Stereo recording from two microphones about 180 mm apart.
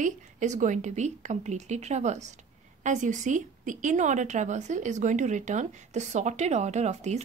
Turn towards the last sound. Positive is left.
turn(degrees=-40)  # may be behind; listen again after turning